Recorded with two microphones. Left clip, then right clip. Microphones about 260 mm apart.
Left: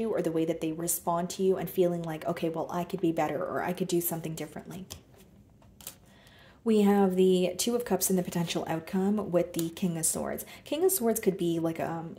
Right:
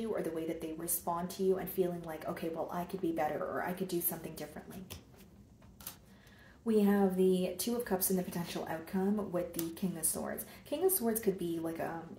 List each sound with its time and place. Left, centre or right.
0.0 s speech: left
6.6 s speech: left